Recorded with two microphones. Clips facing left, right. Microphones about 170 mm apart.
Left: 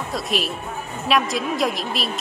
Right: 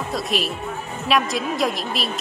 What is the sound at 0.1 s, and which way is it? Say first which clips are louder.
A woman's voice: even; centre (ahead or behind).